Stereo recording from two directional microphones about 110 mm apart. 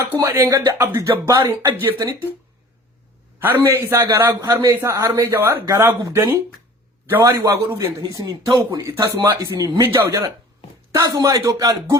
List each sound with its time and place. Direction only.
0.2 s a man's voice: 25° right (ahead or behind)
1.3 s a man's voice: 40° right (ahead or behind)
3.3 s a man's voice: 20° right (ahead or behind)